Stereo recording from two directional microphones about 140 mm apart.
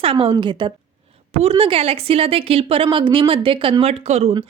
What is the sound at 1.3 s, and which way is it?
Speech, 45° right (ahead or behind).